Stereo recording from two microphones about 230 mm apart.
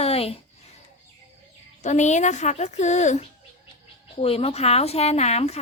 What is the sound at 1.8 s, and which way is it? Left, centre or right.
A woman's voice, left.